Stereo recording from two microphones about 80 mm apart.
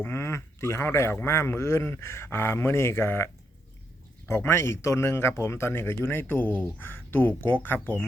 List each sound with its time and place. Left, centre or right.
0.0 s speech: left
4.4 s speech: left